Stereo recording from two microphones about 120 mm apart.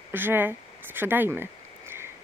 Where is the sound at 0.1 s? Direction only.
15° right (ahead or behind).